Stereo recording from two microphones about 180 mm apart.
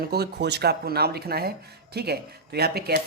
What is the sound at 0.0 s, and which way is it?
Speech, 60° right (ahead or behind).